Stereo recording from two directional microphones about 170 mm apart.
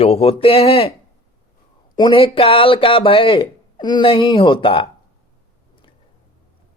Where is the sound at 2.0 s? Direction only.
30° left (ahead or behind).